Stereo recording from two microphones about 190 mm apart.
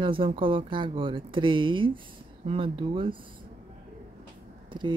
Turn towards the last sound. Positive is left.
turn(degrees=-25)  # may be behind; listen again after turning